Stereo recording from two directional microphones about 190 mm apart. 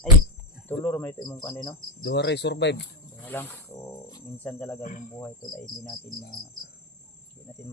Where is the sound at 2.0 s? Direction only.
65° left (ahead or behind).